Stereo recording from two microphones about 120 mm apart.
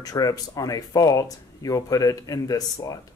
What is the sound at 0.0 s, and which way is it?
Speech, 30° left (ahead or behind).